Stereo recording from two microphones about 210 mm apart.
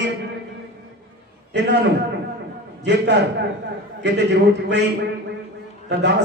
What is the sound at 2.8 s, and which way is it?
A man's voice, 55° right (ahead or behind).